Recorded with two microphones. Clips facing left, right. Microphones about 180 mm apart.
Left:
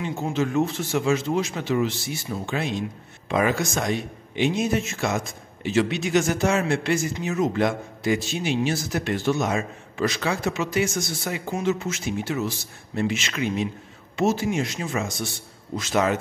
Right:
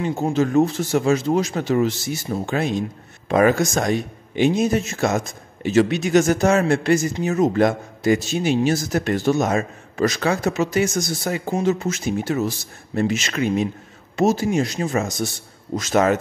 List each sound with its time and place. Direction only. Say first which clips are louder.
0.0 s a man's voice: right 5 dB; 40° right (ahead or behind)